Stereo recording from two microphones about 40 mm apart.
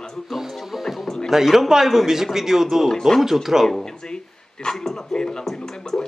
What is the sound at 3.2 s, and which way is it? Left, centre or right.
Speech, centre.